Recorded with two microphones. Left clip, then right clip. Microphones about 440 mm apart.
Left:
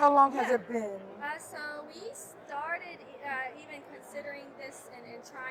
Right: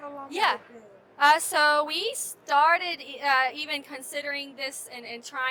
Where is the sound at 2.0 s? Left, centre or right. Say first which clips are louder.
Right 14 dB; right.